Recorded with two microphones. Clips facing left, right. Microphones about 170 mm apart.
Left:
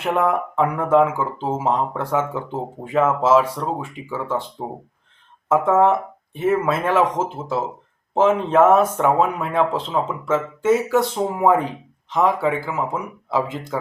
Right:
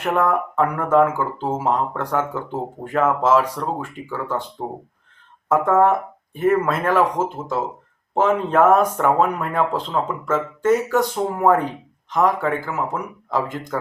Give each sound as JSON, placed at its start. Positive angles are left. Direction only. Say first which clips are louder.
{"t": 0.0, "sound": "speech", "louder": "even", "side_deg": 10}
{"t": 5.5, "sound": "speech", "louder": "even", "side_deg": 5}